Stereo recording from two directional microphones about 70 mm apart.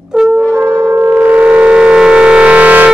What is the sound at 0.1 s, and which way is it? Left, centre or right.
Brass instrument, centre.